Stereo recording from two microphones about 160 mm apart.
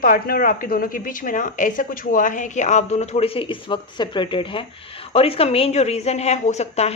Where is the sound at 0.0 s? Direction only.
65° left (ahead or behind).